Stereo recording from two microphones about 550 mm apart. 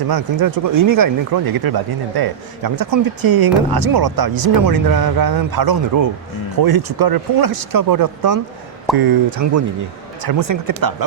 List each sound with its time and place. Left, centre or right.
0.1 s speech: right